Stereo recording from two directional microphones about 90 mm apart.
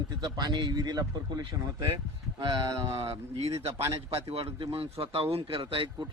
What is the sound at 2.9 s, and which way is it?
Speech, 90° right.